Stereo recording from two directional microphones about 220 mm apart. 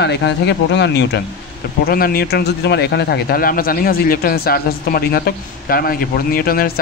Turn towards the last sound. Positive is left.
turn(degrees=45)  # may be behind; listen again after turning